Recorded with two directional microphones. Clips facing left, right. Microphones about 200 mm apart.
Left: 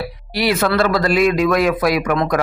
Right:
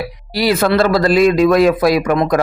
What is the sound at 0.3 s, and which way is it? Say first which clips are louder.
Speech: right 3 dB; 35° right (ahead or behind).